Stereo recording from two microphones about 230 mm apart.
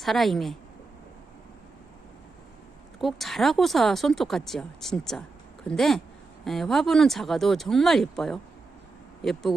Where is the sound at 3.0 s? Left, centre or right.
Centre.